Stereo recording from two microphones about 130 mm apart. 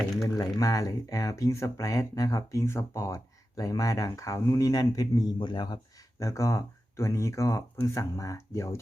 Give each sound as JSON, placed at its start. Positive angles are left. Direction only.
{"t": 0.3, "sound": "speech", "side_deg": 25}